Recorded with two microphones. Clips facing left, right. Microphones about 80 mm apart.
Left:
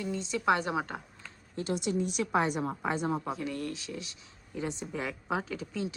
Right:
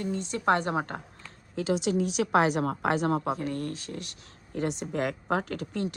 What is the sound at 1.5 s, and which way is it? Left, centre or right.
Speech, right.